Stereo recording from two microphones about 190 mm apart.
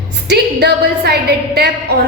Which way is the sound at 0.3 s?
55° right (ahead or behind).